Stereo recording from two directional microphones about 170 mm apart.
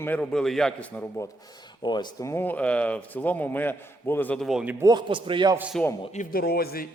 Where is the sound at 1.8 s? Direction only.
25° left (ahead or behind); by 4.7 s 5° right (ahead or behind).